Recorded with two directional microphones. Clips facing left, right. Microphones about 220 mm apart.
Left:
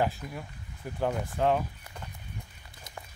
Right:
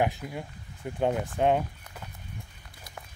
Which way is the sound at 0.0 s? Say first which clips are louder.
Right 2 dB; 20° right (ahead or behind).